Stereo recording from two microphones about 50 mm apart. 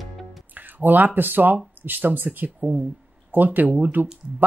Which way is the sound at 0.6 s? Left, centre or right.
Right.